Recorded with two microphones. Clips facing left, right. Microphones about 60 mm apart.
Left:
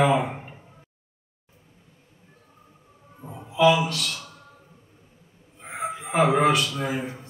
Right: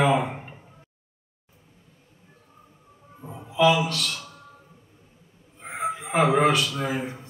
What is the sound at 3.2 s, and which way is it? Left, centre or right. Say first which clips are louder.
Speech: left 1 dB; centre.